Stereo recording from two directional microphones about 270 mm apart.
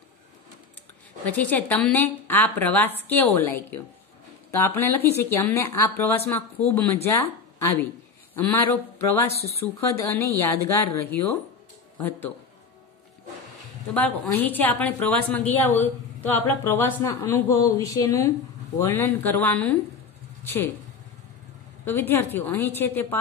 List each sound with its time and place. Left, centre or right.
1.2 s a woman's voice: centre
9.3 s speech: left
9.8 s a woman's voice: centre
13.9 s a woman's voice: centre
21.8 s a woman's voice: centre